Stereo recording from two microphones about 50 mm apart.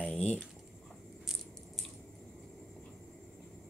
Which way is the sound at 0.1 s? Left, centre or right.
Centre.